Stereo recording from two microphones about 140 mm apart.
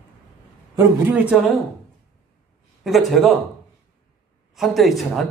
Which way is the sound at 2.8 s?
Centre (ahead or behind).